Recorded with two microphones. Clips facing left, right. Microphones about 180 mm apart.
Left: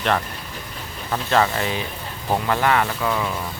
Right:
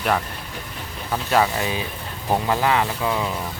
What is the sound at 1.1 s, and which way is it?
Speech, 10° right (ahead or behind).